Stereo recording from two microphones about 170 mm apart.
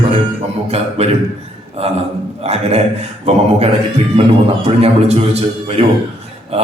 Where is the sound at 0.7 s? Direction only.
40° right (ahead or behind).